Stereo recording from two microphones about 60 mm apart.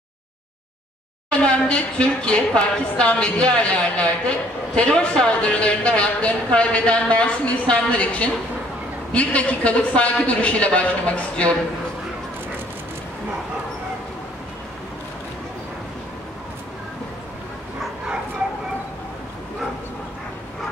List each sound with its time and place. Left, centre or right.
1.3 s a woman's voice: centre